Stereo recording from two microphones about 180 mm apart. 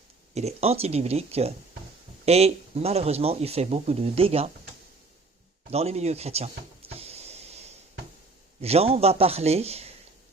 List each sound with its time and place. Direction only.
0.3 s speech: 35° right (ahead or behind)
5.7 s power windows: 35° right (ahead or behind)
8.6 s speech: 35° right (ahead or behind)